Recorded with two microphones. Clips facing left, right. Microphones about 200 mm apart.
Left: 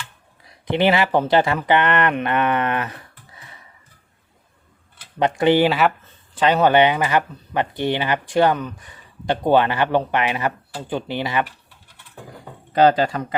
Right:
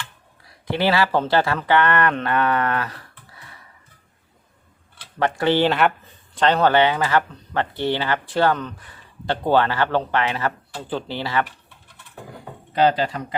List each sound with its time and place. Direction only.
0.7 s speech: 20° left (ahead or behind)
5.2 s speech: 15° left (ahead or behind)
12.7 s speech: 45° left (ahead or behind)